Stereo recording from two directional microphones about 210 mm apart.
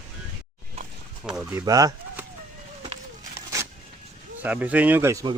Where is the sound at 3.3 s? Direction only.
15° right (ahead or behind).